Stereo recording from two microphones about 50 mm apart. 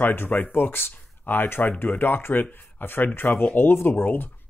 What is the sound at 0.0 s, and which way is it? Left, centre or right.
Speech, left.